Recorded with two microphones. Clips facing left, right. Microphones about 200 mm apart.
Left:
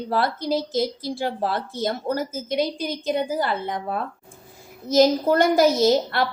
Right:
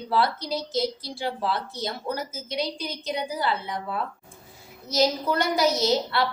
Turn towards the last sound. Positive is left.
turn(degrees=50)  # may be behind; listen again after turning